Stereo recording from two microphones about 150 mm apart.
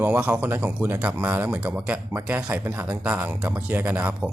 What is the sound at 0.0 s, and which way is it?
Speech, 10° right (ahead or behind).